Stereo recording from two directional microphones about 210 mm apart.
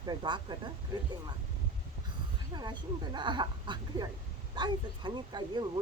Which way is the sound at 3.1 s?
20° right (ahead or behind).